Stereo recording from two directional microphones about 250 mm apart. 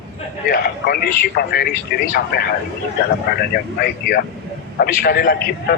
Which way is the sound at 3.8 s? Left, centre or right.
Left.